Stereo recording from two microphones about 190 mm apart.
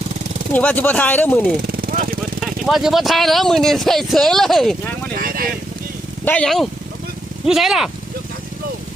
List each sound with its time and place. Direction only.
0.5 s speech: 10° left (ahead or behind)
1.9 s vehicle: 50° right (ahead or behind)
2.4 s speech: centre (ahead or behind)
5.1 s vehicle: 50° right (ahead or behind)
6.2 s speech: 5° left (ahead or behind)